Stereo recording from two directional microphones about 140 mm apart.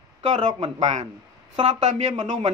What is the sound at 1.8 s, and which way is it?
Speech, 55° right (ahead or behind).